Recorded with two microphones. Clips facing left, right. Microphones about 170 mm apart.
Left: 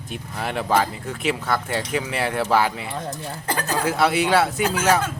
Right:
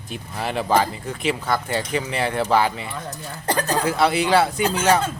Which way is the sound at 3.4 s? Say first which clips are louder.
Right 4 dB; 35° right (ahead or behind).